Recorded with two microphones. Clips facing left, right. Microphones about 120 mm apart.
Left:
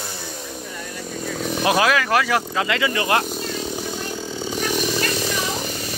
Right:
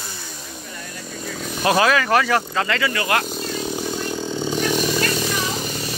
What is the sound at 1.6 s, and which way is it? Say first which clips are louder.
Speech: right 2 dB; 5° left (ahead or behind).